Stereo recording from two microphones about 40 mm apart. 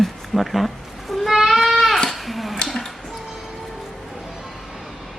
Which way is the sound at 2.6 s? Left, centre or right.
Centre.